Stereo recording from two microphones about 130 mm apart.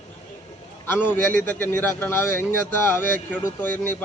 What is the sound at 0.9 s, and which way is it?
A man's voice, 15° left (ahead or behind).